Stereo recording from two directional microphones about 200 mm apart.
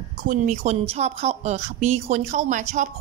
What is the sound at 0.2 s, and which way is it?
Speech, 40° right (ahead or behind).